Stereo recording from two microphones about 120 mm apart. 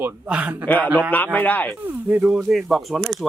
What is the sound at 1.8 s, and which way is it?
Speech, 10° right (ahead or behind).